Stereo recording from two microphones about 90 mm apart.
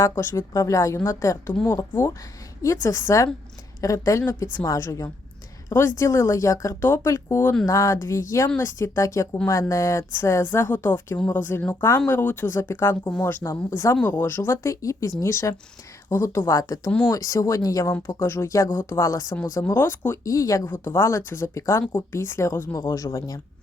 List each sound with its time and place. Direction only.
0.0 s speech: 30° left (ahead or behind)
1.9 s speech: 25° left (ahead or behind); by 17.9 s 40° left (ahead or behind)
17.9 s speech: 25° left (ahead or behind)
20.2 s speech: 40° left (ahead or behind)
20.7 s speech: 25° left (ahead or behind); by 23.4 s 40° left (ahead or behind)